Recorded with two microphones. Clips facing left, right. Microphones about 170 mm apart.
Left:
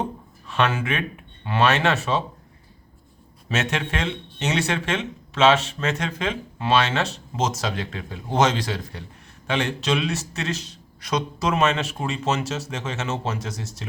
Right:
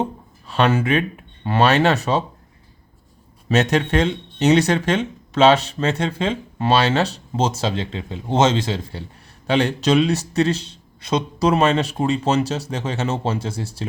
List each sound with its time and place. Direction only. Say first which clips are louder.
0.0 s a sound: right 4 dB; 35° right (ahead or behind)
1.5 s speech: right 4 dB; 40° right (ahead or behind)
3.5 s speech: right 8 dB; 40° right (ahead or behind)